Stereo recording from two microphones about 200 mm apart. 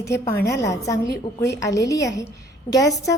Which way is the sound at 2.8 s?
60° left (ahead or behind).